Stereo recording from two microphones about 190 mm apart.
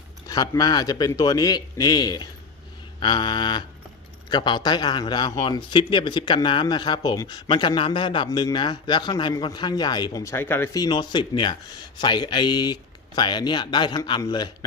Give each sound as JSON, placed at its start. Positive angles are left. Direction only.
{"t": 0.3, "sound": "a man's voice", "side_deg": 20}